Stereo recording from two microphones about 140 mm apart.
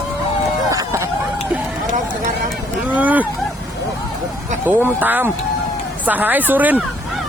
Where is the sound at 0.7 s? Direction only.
20° right (ahead or behind).